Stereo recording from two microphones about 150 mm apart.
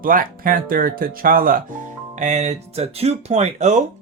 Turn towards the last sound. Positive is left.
turn(degrees=-50)  # may be behind; listen again after turning